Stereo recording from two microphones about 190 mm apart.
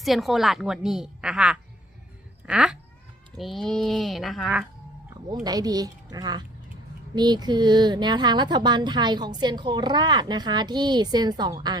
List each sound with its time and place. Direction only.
0.0 s a woman's voice: centre (ahead or behind)
5.3 s speech: 20° right (ahead or behind)